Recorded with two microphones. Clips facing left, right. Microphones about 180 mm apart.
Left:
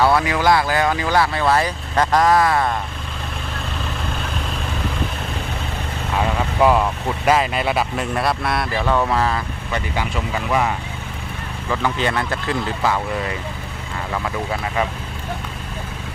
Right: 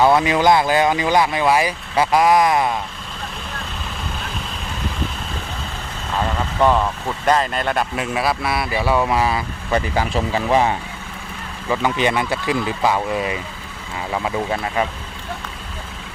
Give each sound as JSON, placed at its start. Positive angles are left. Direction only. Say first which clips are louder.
{"t": 0.0, "sound": "speech", "louder": "right 2 dB", "side_deg": -20}
{"t": 6.1, "sound": "speech", "louder": "left 1 dB", "side_deg": 10}
{"t": 9.7, "sound": "speech", "louder": "right 5 dB", "side_deg": -35}
{"t": 11.7, "sound": "speech", "louder": "right 2 dB", "side_deg": -15}